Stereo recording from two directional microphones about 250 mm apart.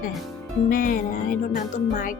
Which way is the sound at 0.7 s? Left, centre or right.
Left.